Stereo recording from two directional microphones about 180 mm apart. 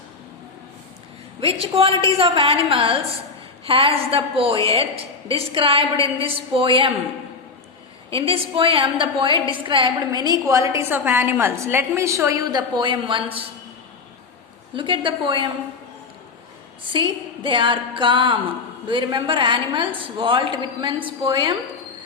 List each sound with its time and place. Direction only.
1.4 s a woman's voice: 30° right (ahead or behind)
8.1 s a woman's voice: 30° right (ahead or behind)
14.8 s a woman's voice: 25° right (ahead or behind)
16.9 s a woman's voice: 25° right (ahead or behind)